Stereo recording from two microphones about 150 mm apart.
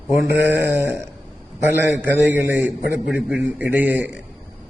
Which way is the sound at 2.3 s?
10° right (ahead or behind).